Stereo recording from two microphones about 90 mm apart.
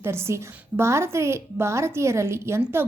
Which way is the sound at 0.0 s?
30° right (ahead or behind).